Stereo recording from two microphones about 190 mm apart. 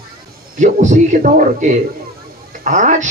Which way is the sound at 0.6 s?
40° right (ahead or behind).